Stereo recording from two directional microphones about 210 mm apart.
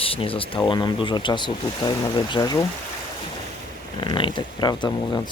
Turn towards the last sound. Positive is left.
turn(degrees=20)  # may be behind; listen again after turning